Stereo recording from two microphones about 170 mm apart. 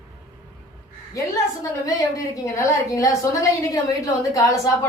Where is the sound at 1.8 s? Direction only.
20° left (ahead or behind).